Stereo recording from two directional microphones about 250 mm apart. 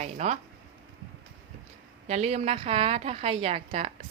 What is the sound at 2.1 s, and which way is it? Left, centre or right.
A woman's voice, right.